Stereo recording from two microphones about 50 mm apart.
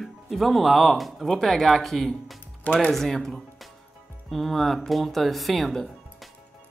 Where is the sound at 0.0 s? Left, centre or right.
Centre.